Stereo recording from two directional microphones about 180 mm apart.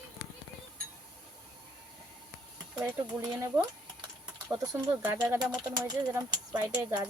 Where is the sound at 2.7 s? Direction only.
10° right (ahead or behind).